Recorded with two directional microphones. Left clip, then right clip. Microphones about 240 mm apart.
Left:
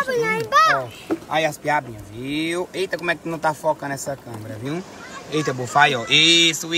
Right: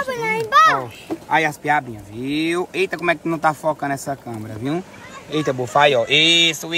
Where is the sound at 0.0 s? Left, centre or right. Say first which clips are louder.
Left 1 dB; centre.